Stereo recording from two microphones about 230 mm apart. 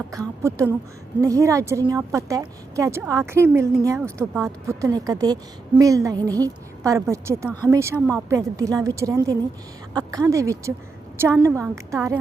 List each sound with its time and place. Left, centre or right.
0.4 s a woman's voice: centre